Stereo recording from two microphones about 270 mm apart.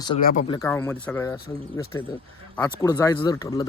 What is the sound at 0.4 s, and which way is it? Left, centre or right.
Speech, centre.